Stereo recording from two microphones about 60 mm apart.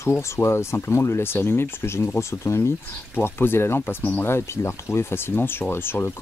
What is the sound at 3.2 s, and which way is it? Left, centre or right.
Speech, left.